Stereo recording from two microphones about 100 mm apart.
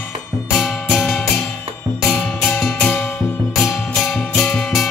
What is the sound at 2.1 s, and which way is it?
Music, 20° left (ahead or behind).